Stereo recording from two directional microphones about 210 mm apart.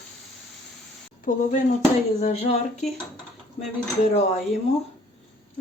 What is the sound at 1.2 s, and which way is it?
Speech, 40° left (ahead or behind).